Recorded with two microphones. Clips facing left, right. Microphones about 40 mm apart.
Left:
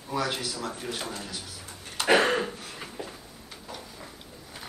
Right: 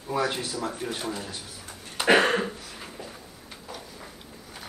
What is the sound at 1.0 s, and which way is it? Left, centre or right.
A man's voice, centre.